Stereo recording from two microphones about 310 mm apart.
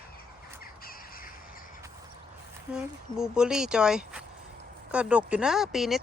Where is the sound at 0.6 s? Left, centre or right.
Left.